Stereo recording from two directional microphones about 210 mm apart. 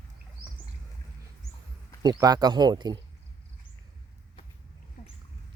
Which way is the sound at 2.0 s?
20° right (ahead or behind).